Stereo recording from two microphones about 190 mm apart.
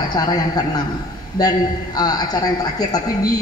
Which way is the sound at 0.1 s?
20° left (ahead or behind).